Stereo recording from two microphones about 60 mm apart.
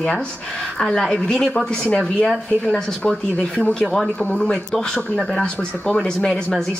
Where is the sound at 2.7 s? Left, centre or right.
Centre.